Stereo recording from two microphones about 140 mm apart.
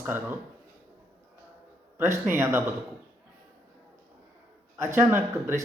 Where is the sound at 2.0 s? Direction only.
20° right (ahead or behind).